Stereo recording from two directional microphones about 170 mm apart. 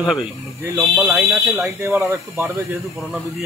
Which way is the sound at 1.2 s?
15° right (ahead or behind).